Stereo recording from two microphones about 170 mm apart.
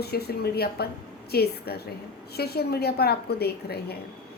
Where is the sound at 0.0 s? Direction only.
70° left (ahead or behind).